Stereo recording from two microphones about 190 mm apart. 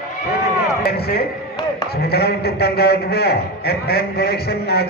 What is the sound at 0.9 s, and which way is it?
A man's voice, 55° left (ahead or behind).